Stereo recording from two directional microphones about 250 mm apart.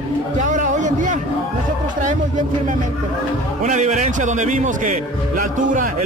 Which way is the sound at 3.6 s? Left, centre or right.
Right.